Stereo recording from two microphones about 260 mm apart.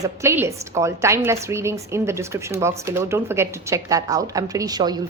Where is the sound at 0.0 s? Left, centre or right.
Centre.